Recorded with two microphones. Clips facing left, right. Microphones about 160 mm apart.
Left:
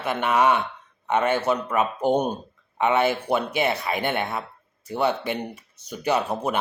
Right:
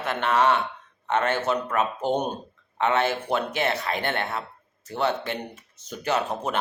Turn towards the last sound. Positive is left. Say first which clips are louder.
# left 2 dB
turn(degrees=10)  # may be behind; listen again after turning